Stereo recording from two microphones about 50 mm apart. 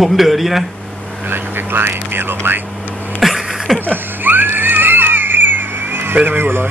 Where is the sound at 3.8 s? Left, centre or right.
Right.